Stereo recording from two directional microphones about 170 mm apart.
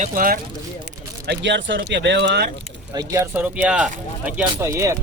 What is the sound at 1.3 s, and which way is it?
Speech, 90° right.